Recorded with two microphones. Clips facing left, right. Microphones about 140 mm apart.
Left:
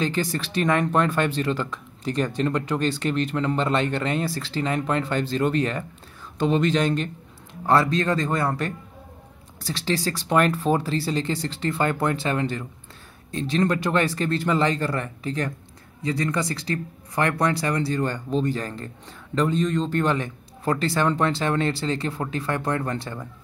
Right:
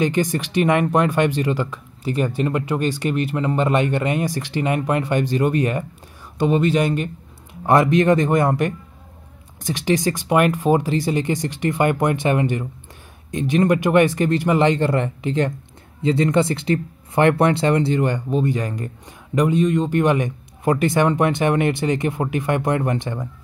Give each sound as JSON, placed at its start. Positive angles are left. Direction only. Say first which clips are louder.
{"t": 0.0, "sound": "speech", "louder": "right 5 dB", "side_deg": -15}